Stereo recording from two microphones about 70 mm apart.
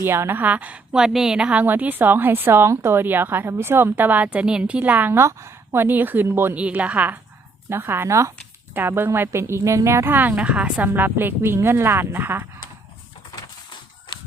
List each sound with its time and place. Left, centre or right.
0.0 s a woman's voice: right
0.9 s a woman's voice: centre
1.6 s a woman's voice: right
5.1 s speech: right
6.6 s a woman's voice: centre
7.7 s speech: right
8.0 s speech: right
8.7 s speech: right
10.1 s a woman's voice: right
10.8 s speech: right